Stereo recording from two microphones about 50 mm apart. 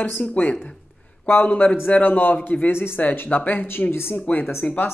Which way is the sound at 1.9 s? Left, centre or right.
Left.